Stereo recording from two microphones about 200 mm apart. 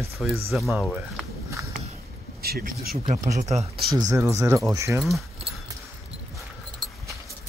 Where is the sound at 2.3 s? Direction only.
50° right (ahead or behind).